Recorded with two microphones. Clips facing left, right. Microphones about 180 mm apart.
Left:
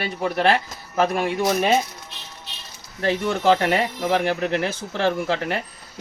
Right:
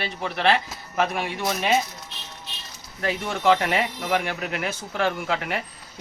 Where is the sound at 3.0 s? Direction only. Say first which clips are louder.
Left 3 dB; 35° left (ahead or behind).